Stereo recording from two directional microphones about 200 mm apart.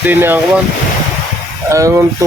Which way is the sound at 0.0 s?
10° right (ahead or behind).